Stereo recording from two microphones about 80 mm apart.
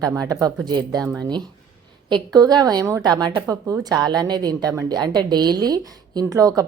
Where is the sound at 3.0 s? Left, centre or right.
Right.